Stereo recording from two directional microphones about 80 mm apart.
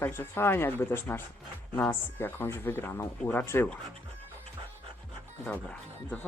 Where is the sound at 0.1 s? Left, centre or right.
Left.